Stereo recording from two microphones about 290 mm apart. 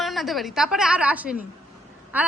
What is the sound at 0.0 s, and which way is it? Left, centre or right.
A woman's voice, centre.